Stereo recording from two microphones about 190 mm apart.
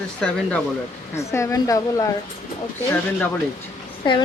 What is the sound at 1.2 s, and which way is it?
Speech, 15° left (ahead or behind).